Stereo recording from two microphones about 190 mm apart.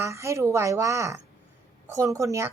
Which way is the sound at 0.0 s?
15° right (ahead or behind).